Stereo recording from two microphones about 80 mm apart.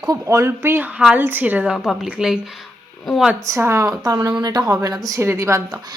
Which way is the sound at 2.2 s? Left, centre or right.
Centre.